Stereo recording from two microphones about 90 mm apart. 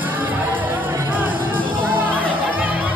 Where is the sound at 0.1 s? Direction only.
20° right (ahead or behind).